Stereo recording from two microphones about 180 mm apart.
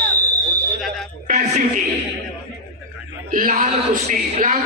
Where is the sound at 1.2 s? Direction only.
40° right (ahead or behind).